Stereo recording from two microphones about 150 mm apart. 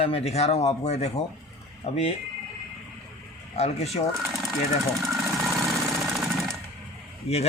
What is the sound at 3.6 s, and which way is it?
Speech, 45° left (ahead or behind).